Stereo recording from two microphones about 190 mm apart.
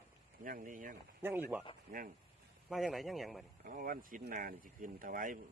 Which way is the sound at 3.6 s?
45° right (ahead or behind).